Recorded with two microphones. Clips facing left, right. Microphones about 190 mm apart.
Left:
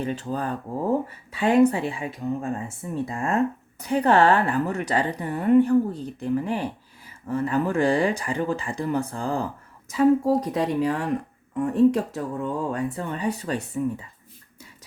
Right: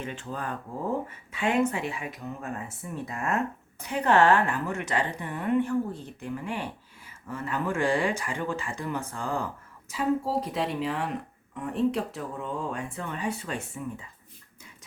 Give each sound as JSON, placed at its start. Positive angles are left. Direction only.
{"t": 0.0, "sound": "speech", "side_deg": 35}
{"t": 10.2, "sound": "speech", "side_deg": 45}